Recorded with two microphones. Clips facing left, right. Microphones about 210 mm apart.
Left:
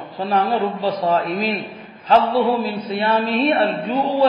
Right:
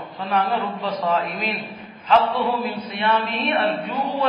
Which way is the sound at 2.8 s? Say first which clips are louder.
Left 3 dB; 30° left (ahead or behind).